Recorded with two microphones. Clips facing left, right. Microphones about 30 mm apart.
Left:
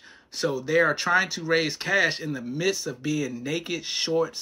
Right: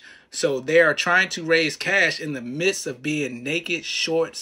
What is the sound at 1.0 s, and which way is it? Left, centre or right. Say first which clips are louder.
Speech: right 3 dB; right.